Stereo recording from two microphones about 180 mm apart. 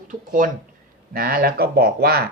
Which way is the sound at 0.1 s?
50° right (ahead or behind).